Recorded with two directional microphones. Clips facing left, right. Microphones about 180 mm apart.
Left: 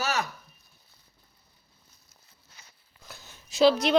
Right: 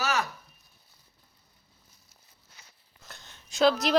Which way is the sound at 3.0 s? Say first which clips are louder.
Left 2 dB; 5° left (ahead or behind).